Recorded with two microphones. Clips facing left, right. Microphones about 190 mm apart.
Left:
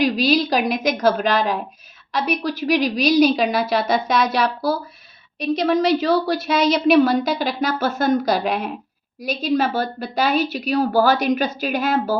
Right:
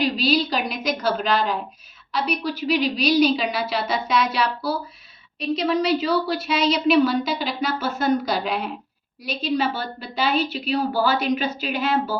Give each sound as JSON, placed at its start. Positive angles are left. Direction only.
{"t": 0.0, "sound": "a woman's voice", "side_deg": 45}